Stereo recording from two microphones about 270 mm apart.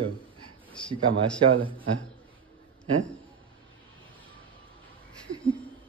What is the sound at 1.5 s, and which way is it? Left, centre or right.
Speech, centre.